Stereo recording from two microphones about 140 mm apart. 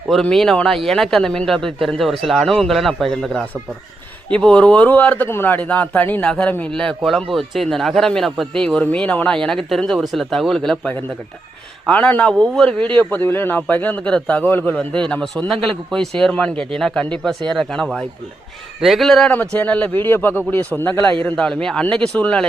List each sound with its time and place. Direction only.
0.1 s a man's voice: 5° left (ahead or behind)